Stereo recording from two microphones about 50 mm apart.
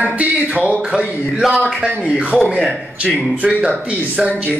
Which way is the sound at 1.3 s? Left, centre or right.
Centre.